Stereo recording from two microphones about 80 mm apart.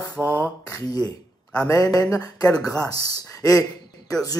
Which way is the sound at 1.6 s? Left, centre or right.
Left.